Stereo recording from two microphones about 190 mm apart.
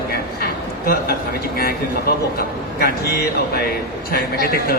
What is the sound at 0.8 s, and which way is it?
A man's voice, 50° left (ahead or behind).